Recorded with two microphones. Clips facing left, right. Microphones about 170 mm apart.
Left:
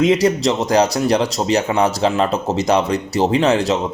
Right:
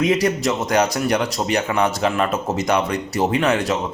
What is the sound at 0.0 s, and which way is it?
Speech, 25° left (ahead or behind).